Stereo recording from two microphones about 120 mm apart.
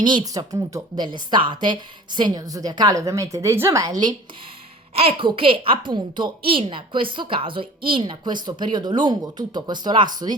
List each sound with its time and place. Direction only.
0.0 s a woman's voice: 35° right (ahead or behind)
4.9 s a woman's voice: 50° right (ahead or behind)